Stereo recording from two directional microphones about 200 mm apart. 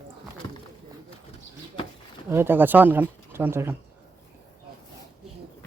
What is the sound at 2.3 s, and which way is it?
Speech, 10° right (ahead or behind).